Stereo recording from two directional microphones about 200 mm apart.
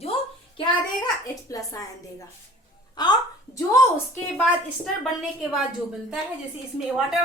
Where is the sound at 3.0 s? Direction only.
20° left (ahead or behind).